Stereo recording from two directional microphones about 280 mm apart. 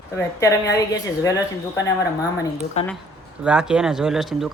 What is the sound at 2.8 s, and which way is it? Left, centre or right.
Speech, left.